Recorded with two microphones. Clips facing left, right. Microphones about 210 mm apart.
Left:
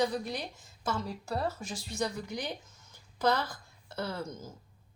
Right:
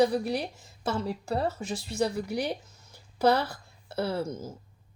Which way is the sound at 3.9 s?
30° right (ahead or behind).